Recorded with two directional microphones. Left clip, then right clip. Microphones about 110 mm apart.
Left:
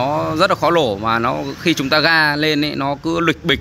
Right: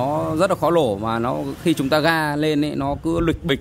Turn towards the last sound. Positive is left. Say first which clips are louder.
# left 4 dB
turn(degrees=-30)  # may be behind; listen again after turning